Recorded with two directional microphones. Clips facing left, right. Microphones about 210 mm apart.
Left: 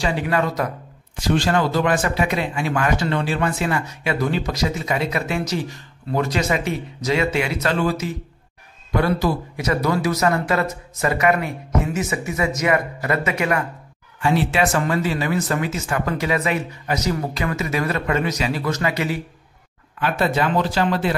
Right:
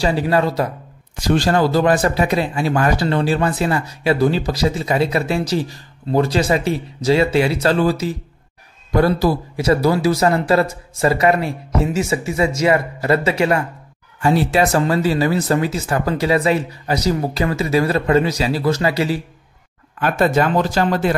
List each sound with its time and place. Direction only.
0.0 s a man's voice: 35° right (ahead or behind)
20.0 s speech: 45° right (ahead or behind)